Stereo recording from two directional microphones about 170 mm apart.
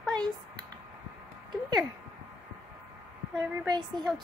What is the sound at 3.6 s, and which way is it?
Speech, 25° right (ahead or behind).